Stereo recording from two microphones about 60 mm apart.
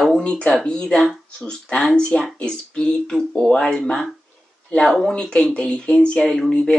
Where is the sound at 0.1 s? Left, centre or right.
Centre.